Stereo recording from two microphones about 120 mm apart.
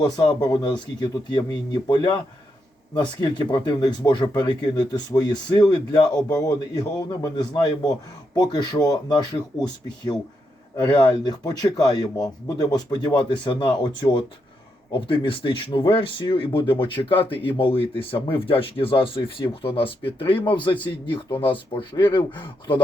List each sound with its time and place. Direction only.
0.0 s speech: 35° left (ahead or behind)
10.8 s speech: 40° left (ahead or behind)